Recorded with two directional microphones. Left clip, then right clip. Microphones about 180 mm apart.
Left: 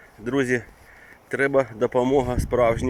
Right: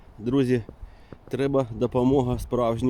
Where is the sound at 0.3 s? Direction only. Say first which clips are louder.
Left 1 dB; 20° right (ahead or behind).